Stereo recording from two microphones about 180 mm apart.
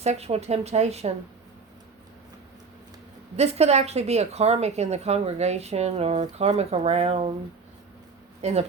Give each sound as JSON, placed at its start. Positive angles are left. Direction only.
{"t": 0.0, "sound": "a woman's voice", "side_deg": -35}
{"t": 3.3, "sound": "a woman's voice", "side_deg": -35}
{"t": 8.4, "sound": "speech", "side_deg": -35}